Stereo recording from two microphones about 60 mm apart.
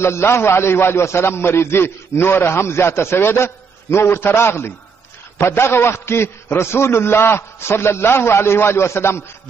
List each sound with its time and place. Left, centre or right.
0.0 s a man's voice: left